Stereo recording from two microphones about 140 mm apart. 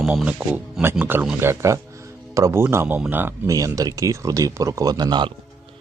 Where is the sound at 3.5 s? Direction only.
25° right (ahead or behind).